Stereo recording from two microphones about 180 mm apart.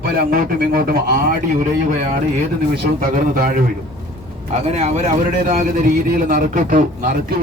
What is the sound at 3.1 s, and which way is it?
Speech, 55° right (ahead or behind).